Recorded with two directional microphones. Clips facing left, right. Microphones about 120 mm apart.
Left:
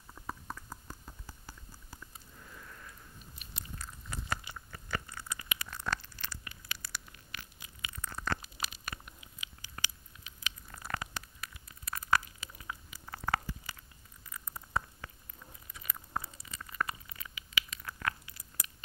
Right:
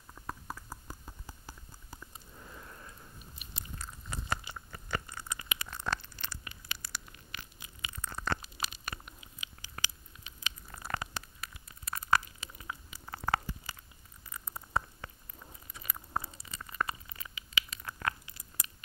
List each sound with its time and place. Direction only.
0.1 s clip-clop: 5° right (ahead or behind)
2.3 s sniff: 25° right (ahead or behind)
3.5 s biting: 25° right (ahead or behind)
14.3 s patter: 30° right (ahead or behind)
15.7 s crunch: 30° right (ahead or behind)